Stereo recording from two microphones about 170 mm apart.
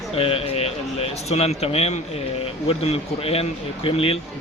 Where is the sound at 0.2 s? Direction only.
35° left (ahead or behind).